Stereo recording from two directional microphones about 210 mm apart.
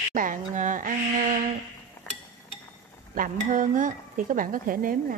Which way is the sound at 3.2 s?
40° right (ahead or behind).